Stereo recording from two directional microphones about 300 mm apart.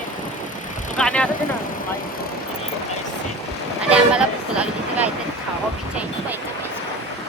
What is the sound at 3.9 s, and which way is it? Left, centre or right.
Speech, centre.